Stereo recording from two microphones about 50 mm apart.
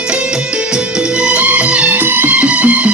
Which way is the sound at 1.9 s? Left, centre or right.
Right.